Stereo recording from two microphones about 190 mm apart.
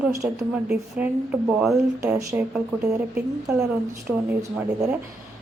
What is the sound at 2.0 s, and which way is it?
Speech, 15° right (ahead or behind).